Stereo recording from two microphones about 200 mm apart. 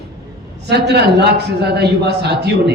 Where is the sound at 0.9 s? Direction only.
55° right (ahead or behind).